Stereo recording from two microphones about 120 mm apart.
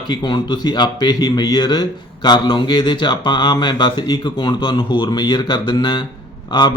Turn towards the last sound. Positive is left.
turn(degrees=40)  # may be behind; listen again after turning